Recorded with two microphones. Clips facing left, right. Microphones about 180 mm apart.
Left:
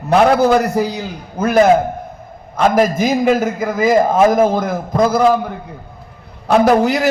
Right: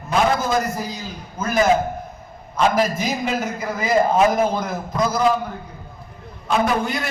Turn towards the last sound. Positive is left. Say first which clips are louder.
# left 9 dB
turn(degrees=75)  # may be behind; listen again after turning